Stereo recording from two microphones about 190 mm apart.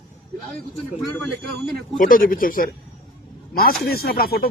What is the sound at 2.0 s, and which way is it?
Speech, 50° left (ahead or behind).